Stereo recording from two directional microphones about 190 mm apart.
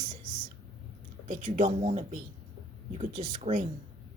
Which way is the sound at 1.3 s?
40° right (ahead or behind).